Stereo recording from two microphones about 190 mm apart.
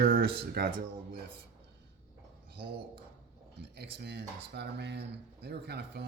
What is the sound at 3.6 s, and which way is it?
Speech, 60° right (ahead or behind).